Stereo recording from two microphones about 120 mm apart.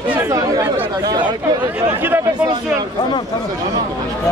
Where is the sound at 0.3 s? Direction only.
30° right (ahead or behind).